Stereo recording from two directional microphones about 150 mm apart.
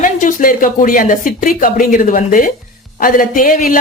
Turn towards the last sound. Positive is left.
turn(degrees=60)  # may be behind; listen again after turning